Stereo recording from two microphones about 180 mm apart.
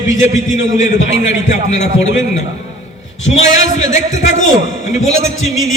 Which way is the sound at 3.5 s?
45° left (ahead or behind).